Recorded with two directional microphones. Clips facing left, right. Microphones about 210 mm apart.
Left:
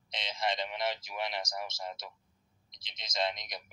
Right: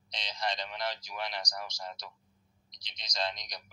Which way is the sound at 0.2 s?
25° left (ahead or behind).